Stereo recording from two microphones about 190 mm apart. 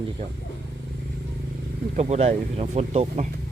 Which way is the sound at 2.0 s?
35° right (ahead or behind).